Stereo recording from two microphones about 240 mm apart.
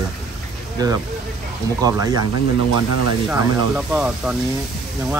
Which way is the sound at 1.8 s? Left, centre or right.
Centre.